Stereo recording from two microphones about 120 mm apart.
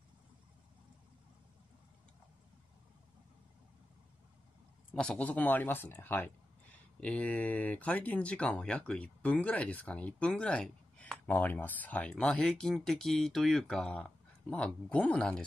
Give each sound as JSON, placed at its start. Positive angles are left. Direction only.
{"t": 4.9, "sound": "speech", "side_deg": 5}